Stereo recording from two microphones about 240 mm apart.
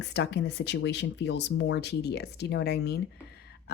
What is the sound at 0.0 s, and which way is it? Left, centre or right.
Speech, left.